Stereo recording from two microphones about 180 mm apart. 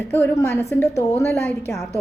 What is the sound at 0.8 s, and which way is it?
Speech, 40° left (ahead or behind).